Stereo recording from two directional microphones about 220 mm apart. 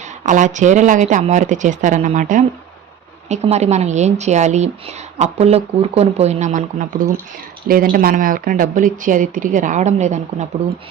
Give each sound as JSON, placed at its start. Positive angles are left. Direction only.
{"t": 0.3, "sound": "speech", "side_deg": -35}